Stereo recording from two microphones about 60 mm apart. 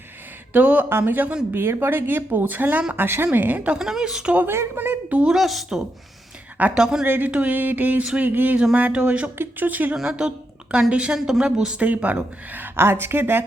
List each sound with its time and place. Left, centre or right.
0.5 s speech: right
0.9 s speech: right
1.5 s speech: right
3.8 s a woman's voice: centre
4.4 s speech: right
4.8 s speech: right
5.2 s speech: centre
6.6 s a woman's voice: centre
7.0 s speech: right
7.3 s speech: centre
7.5 s speech: right
9.9 s a woman's voice: centre; by 13.4 s right